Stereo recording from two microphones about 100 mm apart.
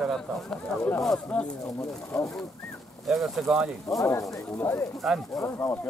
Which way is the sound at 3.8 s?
30° left (ahead or behind).